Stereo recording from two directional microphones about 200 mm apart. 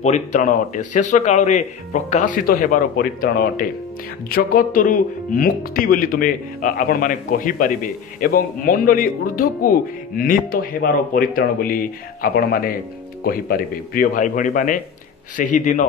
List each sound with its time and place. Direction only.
0.0 s speech: 35° left (ahead or behind)